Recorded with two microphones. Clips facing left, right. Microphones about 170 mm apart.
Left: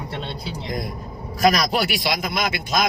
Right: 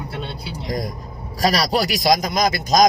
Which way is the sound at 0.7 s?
40° right (ahead or behind).